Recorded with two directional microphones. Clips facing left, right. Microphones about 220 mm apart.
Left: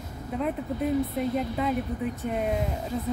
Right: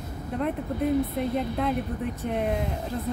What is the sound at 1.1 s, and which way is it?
Speech, centre (ahead or behind).